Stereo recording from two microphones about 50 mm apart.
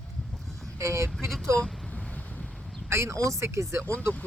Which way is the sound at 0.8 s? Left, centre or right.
Right.